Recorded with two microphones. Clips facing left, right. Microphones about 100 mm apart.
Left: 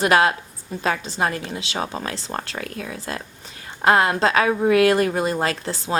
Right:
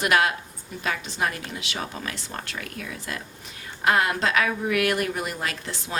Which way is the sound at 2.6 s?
30° left (ahead or behind).